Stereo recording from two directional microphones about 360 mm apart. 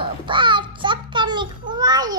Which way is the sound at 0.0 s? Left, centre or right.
Centre.